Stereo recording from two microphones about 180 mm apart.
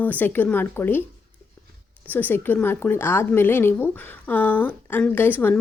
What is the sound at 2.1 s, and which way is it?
A woman's voice, 10° left (ahead or behind).